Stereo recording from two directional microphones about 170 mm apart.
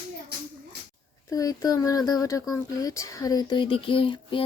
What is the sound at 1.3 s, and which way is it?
Speech, 20° left (ahead or behind).